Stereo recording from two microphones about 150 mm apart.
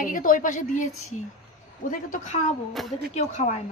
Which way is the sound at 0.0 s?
60° left (ahead or behind).